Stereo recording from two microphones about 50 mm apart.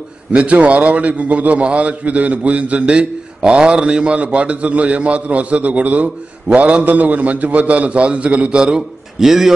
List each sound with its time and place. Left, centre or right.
0.3 s a man's voice: right; by 9.5 s centre